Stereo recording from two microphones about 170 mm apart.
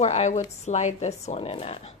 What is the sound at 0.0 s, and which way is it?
A woman's voice, 40° left (ahead or behind).